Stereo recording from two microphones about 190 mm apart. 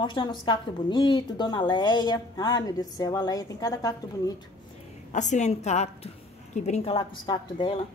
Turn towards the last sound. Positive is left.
turn(degrees=25)  # may be behind; listen again after turning